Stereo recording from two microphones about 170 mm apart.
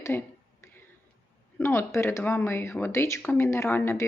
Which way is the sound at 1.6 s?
15° left (ahead or behind).